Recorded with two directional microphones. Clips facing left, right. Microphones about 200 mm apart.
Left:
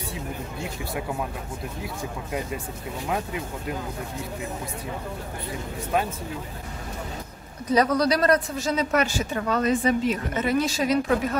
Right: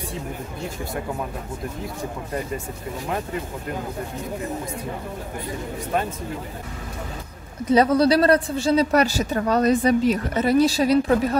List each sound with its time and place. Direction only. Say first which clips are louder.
3.1 s speech: right 1 dB; 5° left (ahead or behind)
7.7 s speech: right 4 dB; 30° right (ahead or behind)